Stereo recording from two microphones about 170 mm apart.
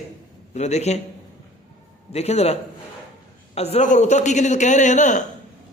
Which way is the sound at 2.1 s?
40° left (ahead or behind).